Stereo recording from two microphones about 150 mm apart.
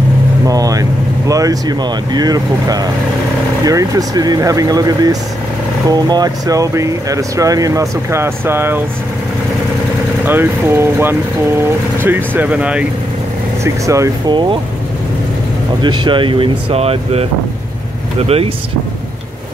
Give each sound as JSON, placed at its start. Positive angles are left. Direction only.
{"t": 0.5, "sound": "speech", "side_deg": -25}
{"t": 10.2, "sound": "speech", "side_deg": -15}
{"t": 13.8, "sound": "speech", "side_deg": -20}
{"t": 15.8, "sound": "speech", "side_deg": -30}